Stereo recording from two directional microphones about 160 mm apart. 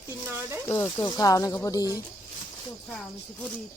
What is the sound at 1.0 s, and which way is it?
Speech, 20° left (ahead or behind).